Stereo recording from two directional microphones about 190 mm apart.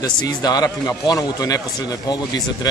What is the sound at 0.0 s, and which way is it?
Speech, 20° left (ahead or behind).